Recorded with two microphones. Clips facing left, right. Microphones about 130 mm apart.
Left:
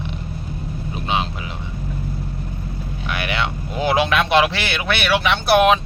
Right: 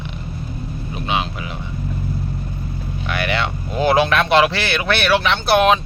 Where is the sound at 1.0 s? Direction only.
30° left (ahead or behind).